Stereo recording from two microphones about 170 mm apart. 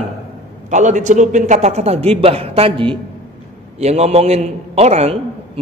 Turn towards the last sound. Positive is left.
turn(degrees=-40)  # may be behind; listen again after turning